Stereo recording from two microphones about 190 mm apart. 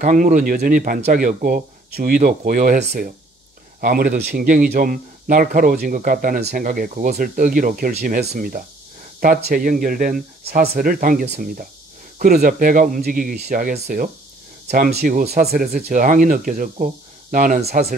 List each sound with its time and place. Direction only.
0.0 s speech: 40° right (ahead or behind)